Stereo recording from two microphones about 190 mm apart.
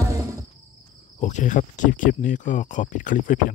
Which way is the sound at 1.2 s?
40° left (ahead or behind).